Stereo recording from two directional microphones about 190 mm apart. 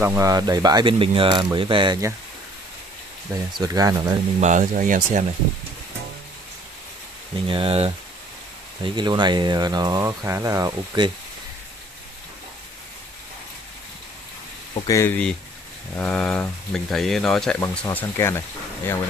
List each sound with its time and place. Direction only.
0.0 s speech: 15° right (ahead or behind)
3.5 s speech: 20° right (ahead or behind)
4.4 s speech: 40° right (ahead or behind)
7.4 s speech: 30° right (ahead or behind)
14.9 s speech: 10° left (ahead or behind)